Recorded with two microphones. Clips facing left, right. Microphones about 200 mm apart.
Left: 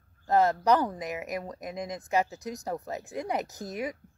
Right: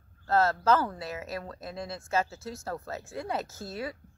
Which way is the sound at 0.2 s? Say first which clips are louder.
Left 2 dB; 15° left (ahead or behind).